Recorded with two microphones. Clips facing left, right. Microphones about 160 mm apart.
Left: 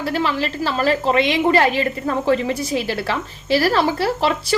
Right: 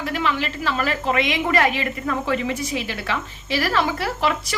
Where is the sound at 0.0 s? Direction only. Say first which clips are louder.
Left 3 dB; 35° left (ahead or behind).